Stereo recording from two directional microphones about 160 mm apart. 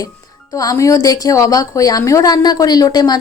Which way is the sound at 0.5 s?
20° left (ahead or behind).